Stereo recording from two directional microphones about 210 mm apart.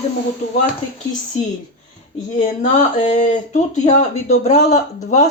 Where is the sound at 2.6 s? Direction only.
35° left (ahead or behind).